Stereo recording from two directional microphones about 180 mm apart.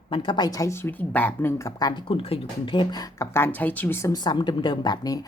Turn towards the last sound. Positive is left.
turn(degrees=20)  # may be behind; listen again after turning